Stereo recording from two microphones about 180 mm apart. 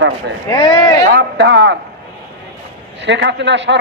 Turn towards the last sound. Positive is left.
turn(degrees=-80)